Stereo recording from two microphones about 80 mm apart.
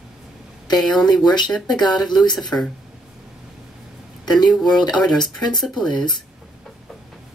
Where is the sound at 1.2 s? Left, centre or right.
Left.